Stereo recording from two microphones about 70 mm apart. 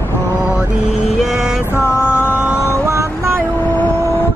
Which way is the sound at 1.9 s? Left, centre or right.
Left.